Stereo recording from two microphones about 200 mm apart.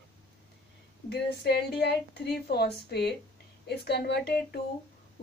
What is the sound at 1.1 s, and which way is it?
A woman's voice, 55° left (ahead or behind).